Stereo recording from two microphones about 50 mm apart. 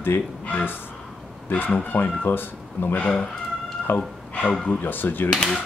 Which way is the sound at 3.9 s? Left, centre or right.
Left.